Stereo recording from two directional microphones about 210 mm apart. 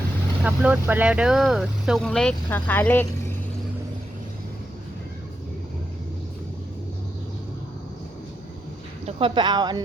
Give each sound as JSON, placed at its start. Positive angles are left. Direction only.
{"t": 0.4, "sound": "speech", "side_deg": -5}
{"t": 9.0, "sound": "speech", "side_deg": -25}